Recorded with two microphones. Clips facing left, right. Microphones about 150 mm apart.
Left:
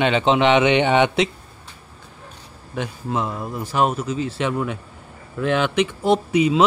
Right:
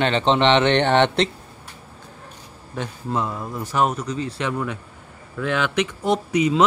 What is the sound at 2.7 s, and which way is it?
Speech, 15° left (ahead or behind).